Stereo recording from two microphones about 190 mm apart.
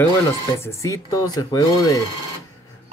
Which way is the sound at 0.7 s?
15° left (ahead or behind).